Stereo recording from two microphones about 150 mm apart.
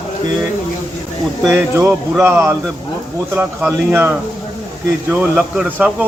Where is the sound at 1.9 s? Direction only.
5° right (ahead or behind).